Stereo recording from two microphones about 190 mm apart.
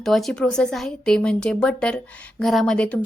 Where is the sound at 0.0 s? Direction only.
Centre (ahead or behind).